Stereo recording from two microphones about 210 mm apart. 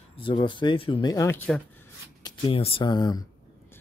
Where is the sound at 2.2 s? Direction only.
25° left (ahead or behind).